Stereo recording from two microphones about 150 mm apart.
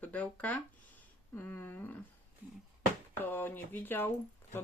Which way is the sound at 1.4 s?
15° left (ahead or behind).